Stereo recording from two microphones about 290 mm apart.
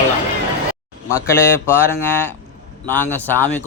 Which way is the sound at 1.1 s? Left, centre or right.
Centre.